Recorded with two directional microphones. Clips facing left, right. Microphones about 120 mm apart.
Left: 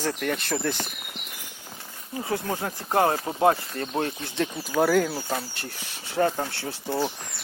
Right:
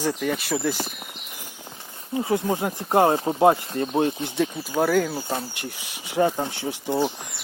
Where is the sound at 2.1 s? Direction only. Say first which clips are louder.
Right 5 dB; 20° right (ahead or behind).